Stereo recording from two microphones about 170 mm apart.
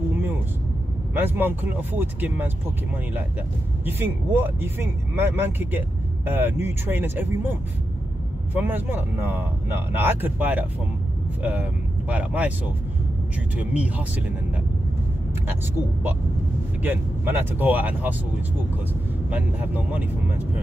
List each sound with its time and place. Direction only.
1.1 s speech: 10° right (ahead or behind)
3.8 s speech: 10° right (ahead or behind)
8.5 s speech: 10° right (ahead or behind)
13.6 s speech: 10° right (ahead or behind)
16.8 s speech: 10° right (ahead or behind)
19.3 s speech: 10° right (ahead or behind)